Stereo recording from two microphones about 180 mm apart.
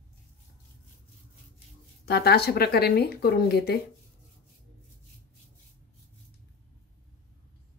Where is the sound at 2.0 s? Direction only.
60° left (ahead or behind).